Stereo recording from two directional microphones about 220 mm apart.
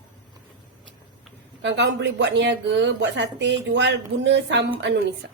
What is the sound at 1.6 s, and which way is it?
Speech, 55° right (ahead or behind).